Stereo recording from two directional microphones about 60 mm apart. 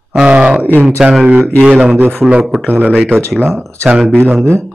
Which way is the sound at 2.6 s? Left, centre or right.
Right.